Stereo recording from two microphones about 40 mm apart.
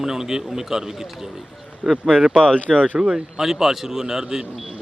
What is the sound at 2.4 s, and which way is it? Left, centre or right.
Speech, left.